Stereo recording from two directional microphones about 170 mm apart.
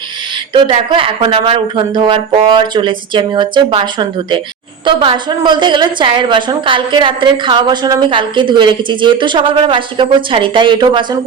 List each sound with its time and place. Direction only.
0.5 s a woman's voice: 30° right (ahead or behind)